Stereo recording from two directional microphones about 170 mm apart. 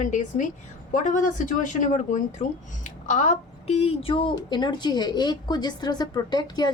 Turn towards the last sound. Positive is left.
turn(degrees=25)  # may be behind; listen again after turning